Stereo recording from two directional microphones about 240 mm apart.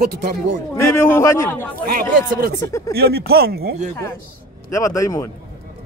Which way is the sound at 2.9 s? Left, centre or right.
Right.